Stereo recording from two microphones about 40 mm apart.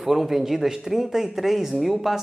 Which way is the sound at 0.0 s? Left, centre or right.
Centre.